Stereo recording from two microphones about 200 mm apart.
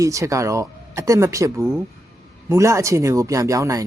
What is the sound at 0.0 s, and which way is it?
Speech, 15° right (ahead or behind).